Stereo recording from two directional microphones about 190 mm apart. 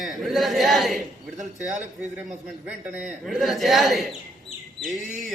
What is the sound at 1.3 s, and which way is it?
Speech, 40° right (ahead or behind).